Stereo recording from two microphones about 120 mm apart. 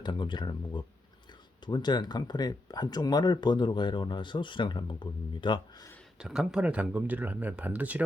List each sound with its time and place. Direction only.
0.0 s speech: 40° left (ahead or behind)
6.1 s speech: 5° right (ahead or behind)